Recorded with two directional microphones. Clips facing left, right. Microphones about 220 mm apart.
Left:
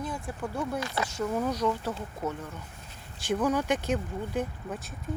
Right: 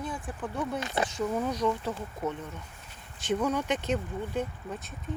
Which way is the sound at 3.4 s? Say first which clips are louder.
Left 2 dB; 10° left (ahead or behind).